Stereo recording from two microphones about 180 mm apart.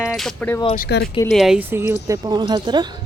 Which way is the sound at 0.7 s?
55° left (ahead or behind).